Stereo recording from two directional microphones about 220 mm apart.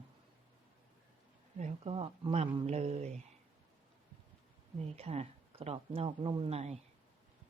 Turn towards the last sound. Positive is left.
turn(degrees=-30)  # may be behind; listen again after turning